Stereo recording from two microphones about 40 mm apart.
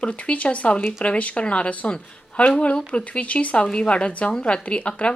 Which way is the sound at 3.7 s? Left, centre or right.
Left.